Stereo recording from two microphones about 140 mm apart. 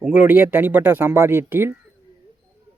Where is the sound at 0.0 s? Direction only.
10° right (ahead or behind).